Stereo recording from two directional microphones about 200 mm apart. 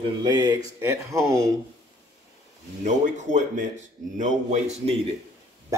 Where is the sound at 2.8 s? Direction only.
35° right (ahead or behind).